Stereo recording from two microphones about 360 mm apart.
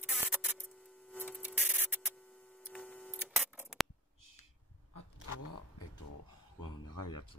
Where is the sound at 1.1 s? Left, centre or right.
Centre.